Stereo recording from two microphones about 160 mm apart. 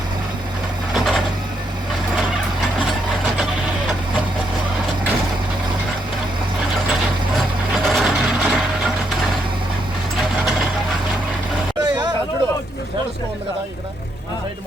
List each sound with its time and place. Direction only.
0.9 s a sound: centre (ahead or behind)
7.9 s mechanisms: centre (ahead or behind)
11.8 s hubbub: 25° right (ahead or behind)